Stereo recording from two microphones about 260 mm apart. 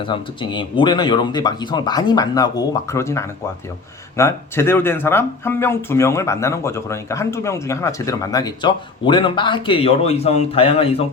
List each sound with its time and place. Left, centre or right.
0.0 s speech: centre